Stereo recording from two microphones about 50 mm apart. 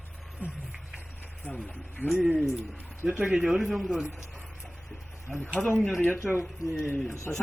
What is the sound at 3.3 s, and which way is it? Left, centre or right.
Speech, centre.